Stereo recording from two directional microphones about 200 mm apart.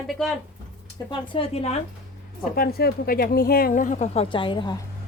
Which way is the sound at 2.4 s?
45° left (ahead or behind).